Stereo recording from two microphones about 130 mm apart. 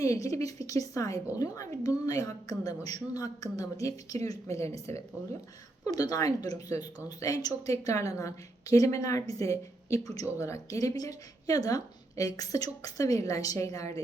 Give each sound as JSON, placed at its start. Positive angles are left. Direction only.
{"t": 0.0, "sound": "speech", "side_deg": 25}